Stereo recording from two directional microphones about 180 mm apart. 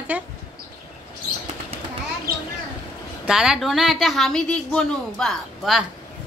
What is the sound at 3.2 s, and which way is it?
A woman's voice, 5° right (ahead or behind).